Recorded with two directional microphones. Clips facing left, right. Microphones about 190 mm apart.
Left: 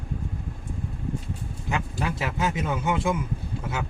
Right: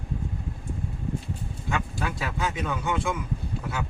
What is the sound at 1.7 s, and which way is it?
A man's voice, 20° left (ahead or behind).